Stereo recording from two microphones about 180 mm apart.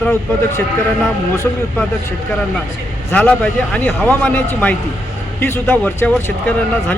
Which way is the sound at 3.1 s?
10° left (ahead or behind).